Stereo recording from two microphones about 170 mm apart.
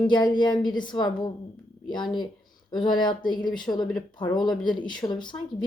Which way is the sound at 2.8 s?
25° left (ahead or behind).